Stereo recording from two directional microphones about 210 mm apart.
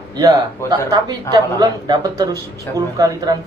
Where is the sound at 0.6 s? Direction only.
20° right (ahead or behind).